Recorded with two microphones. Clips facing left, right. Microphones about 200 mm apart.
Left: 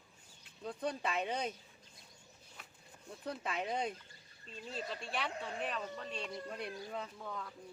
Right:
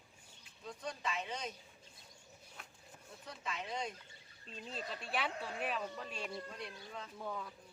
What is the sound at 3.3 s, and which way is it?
Speech, 60° left (ahead or behind).